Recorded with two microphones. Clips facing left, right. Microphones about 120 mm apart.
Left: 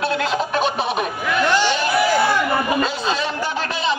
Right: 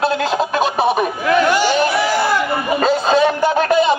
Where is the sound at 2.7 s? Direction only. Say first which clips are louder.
Right 7 dB; 45° right (ahead or behind).